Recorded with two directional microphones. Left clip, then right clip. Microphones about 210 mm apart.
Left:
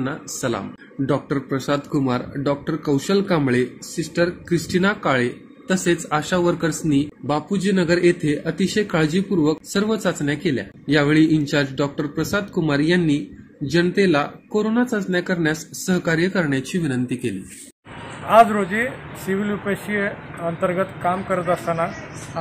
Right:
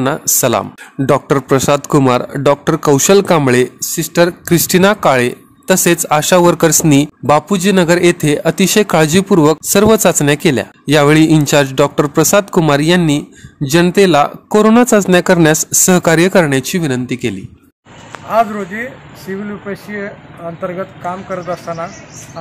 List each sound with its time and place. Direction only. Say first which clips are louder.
0.0 s speech: right 12 dB; 50° right (ahead or behind)
18.3 s speech: even; centre (ahead or behind)